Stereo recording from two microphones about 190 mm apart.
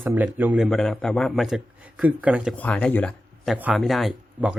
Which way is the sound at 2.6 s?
5° left (ahead or behind).